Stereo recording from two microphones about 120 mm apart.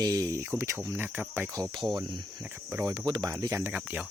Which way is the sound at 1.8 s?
40° right (ahead or behind).